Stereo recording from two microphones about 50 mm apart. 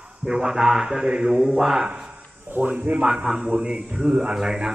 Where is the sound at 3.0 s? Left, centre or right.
Centre.